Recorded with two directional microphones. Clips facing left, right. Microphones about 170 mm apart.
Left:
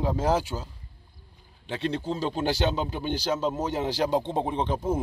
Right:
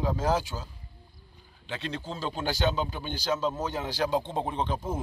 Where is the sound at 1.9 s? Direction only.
30° left (ahead or behind).